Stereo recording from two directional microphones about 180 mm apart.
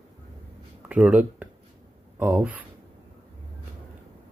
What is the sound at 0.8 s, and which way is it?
Speech, 5° right (ahead or behind).